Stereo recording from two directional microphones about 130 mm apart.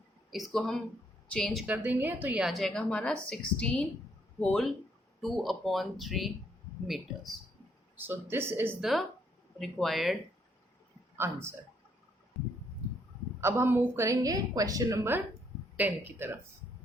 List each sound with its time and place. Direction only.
0.3 s a woman's voice: centre (ahead or behind)
1.6 s a woman's voice: 15° right (ahead or behind)
2.5 s a woman's voice: 5° left (ahead or behind)
7.9 s a woman's voice: 15° right (ahead or behind)
8.8 s a woman's voice: centre (ahead or behind)
11.2 s a woman's voice: 20° right (ahead or behind)
13.4 s a woman's voice: 20° right (ahead or behind)